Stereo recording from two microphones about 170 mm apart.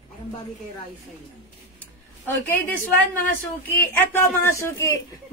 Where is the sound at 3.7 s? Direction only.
15° left (ahead or behind).